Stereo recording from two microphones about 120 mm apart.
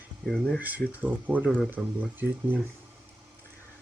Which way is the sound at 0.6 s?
15° right (ahead or behind).